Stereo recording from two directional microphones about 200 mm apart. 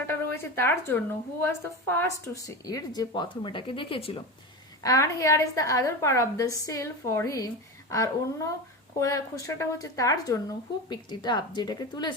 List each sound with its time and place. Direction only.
0.1 s a woman's voice: 10° left (ahead or behind); by 4.2 s 30° left (ahead or behind)
4.8 s a woman's voice: 15° left (ahead or behind)